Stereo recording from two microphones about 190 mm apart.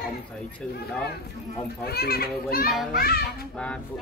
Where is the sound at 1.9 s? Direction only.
55° left (ahead or behind).